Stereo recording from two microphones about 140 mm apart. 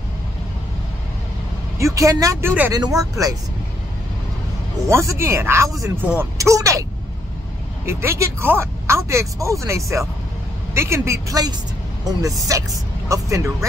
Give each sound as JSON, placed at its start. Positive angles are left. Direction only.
{"t": 1.8, "sound": "speech", "side_deg": -25}
{"t": 4.8, "sound": "speech", "side_deg": -20}